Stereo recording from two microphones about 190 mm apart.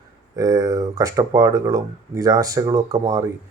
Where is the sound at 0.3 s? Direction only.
15° right (ahead or behind).